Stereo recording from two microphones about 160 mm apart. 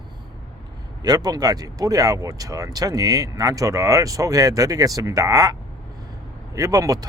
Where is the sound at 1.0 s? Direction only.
25° right (ahead or behind).